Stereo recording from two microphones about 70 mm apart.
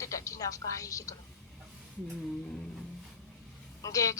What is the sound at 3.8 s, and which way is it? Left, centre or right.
Speech, left.